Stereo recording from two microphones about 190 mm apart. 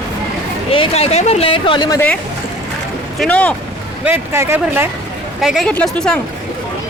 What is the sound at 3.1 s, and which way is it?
Speech, 5° left (ahead or behind).